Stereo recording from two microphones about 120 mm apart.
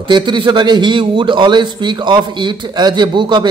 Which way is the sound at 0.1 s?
40° right (ahead or behind).